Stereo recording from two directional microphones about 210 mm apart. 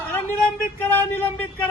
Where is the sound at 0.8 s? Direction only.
10° left (ahead or behind).